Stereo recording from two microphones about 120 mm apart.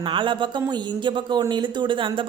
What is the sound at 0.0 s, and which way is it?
Speech, 45° right (ahead or behind).